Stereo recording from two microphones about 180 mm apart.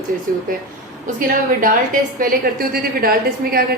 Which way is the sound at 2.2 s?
55° right (ahead or behind).